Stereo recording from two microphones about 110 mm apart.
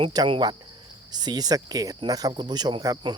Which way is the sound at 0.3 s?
45° right (ahead or behind).